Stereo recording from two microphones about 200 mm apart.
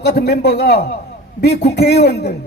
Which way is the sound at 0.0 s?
50° left (ahead or behind).